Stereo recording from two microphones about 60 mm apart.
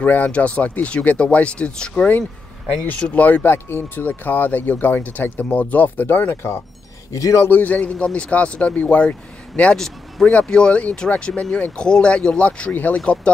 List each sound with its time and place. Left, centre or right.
0.0 s speech: left
3.2 s speech: left
3.4 s speech: left
7.1 s speech: left
7.4 s speech: left
9.5 s speech: centre
10.2 s speech: centre